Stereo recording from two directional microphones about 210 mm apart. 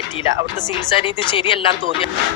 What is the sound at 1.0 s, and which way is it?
Speech, 25° left (ahead or behind).